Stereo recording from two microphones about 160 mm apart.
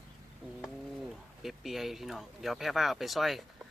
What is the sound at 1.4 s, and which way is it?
Speech, centre (ahead or behind).